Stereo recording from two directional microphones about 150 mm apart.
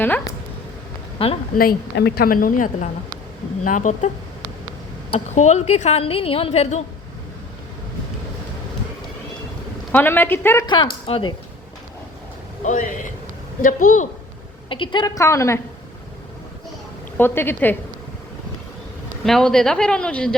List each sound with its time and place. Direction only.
1.2 s speech: 40° left (ahead or behind)
1.5 s a woman's voice: 85° left; by 4.1 s 55° left (ahead or behind)
5.1 s a woman's voice: 50° left (ahead or behind)
9.9 s speech: 15° left (ahead or behind)
11.0 s speech: 35° left (ahead or behind)
12.6 s a woman's voice: 55° left (ahead or behind)
14.7 s a woman's voice: 35° left (ahead or behind)
17.2 s a woman's voice: 15° left (ahead or behind)
19.2 s speech: 5° left (ahead or behind)